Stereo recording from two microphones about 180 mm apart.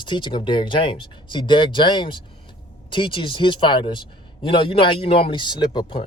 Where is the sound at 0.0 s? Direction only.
25° left (ahead or behind).